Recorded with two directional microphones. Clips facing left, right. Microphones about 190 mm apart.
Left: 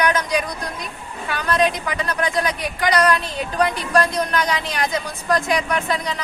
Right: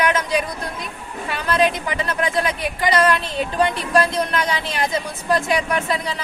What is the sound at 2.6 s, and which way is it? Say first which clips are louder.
Speech: right 1 dB; centre (ahead or behind).